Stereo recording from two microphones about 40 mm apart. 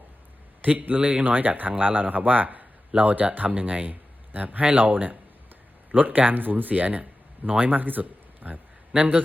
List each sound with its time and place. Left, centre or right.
0.6 s speech: right